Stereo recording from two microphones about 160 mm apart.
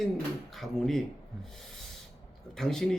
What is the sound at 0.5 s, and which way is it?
Speech, centre (ahead or behind).